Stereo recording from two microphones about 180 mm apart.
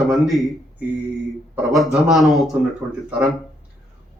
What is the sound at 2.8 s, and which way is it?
Speech, 20° right (ahead or behind).